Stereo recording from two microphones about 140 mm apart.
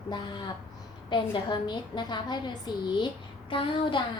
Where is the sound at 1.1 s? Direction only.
35° left (ahead or behind).